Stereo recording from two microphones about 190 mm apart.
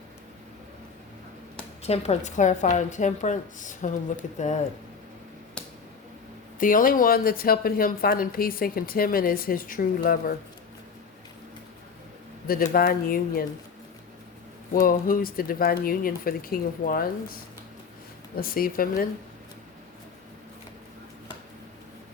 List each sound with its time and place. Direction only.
1.8 s a woman's voice: 35° left (ahead or behind)
6.6 s speech: 45° left (ahead or behind)
12.5 s speech: 50° left (ahead or behind)
14.7 s speech: 50° left (ahead or behind)
18.3 s speech: 50° left (ahead or behind)